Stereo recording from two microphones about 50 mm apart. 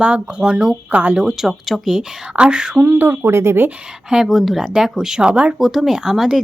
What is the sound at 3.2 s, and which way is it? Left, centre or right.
Speech, right.